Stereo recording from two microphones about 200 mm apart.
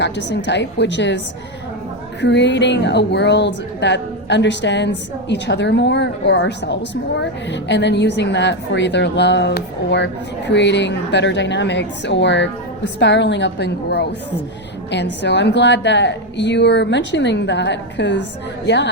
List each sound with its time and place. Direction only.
0.0 s a woman's voice: 60° left (ahead or behind)
2.2 s a woman's voice: 60° left (ahead or behind)